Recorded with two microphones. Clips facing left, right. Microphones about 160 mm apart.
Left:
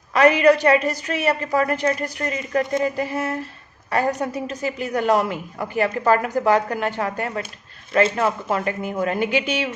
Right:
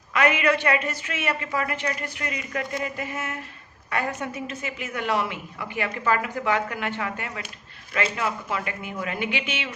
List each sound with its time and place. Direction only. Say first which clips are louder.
0.1 s a woman's voice: left 7 dB; 35° left (ahead or behind)